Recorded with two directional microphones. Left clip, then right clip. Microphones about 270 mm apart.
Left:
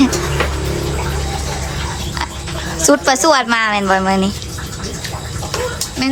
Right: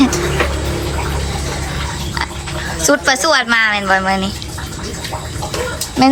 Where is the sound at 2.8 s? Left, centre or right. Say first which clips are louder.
Left 1 dB; centre.